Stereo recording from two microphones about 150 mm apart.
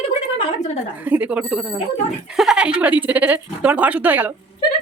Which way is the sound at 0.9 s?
10° right (ahead or behind).